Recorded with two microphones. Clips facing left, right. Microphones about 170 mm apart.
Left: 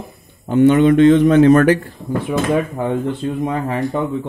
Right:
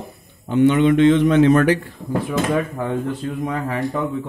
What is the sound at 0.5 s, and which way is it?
Speech, 45° left (ahead or behind).